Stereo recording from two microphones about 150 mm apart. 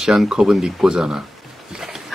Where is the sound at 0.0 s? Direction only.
5° right (ahead or behind).